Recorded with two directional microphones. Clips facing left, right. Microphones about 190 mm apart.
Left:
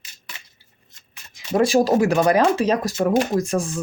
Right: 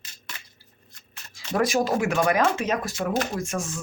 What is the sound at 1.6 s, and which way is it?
Speech, 30° left (ahead or behind).